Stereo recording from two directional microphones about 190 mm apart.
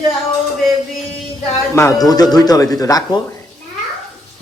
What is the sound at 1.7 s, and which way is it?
A man's voice, 15° left (ahead or behind).